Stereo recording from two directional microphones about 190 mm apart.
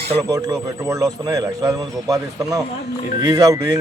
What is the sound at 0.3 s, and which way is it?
A man's voice, 20° right (ahead or behind).